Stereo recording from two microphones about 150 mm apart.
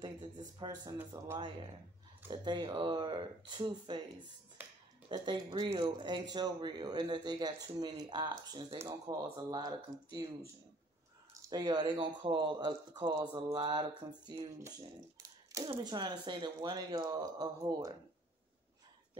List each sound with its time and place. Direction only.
0.0 s speech: 30° right (ahead or behind)
1.1 s speech: 15° right (ahead or behind)
2.2 s speech: 30° right (ahead or behind)
5.1 s speech: 30° right (ahead or behind)
14.8 s a sound: 25° right (ahead or behind)
15.8 s speech: 30° right (ahead or behind)